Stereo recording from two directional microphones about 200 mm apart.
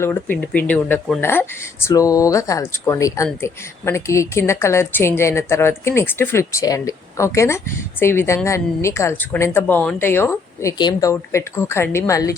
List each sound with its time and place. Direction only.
0.0 s a woman's voice: 10° left (ahead or behind)